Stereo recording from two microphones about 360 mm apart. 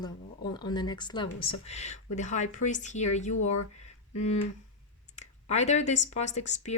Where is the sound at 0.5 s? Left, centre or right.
Centre.